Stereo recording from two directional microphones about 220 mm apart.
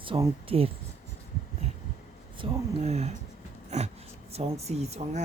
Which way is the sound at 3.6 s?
30° right (ahead or behind).